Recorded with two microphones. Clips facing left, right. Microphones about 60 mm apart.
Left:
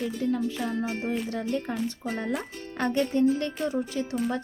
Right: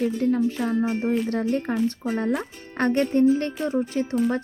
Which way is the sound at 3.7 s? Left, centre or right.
Right.